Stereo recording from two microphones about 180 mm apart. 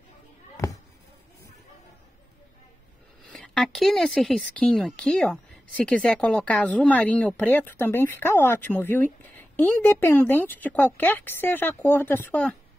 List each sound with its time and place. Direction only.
3.3 s speech: centre (ahead or behind)